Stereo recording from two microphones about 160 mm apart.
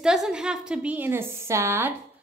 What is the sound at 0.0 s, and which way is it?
A woman's voice, 5° right (ahead or behind).